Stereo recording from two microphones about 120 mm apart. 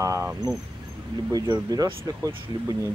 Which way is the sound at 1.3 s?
35° right (ahead or behind).